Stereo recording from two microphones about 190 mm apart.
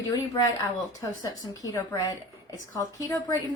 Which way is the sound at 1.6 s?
20° left (ahead or behind).